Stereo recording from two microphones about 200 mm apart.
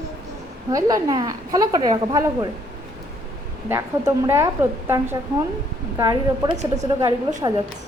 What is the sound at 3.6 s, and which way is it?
A woman's voice, 15° right (ahead or behind).